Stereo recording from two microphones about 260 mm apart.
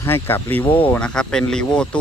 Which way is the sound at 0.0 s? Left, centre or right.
Centre.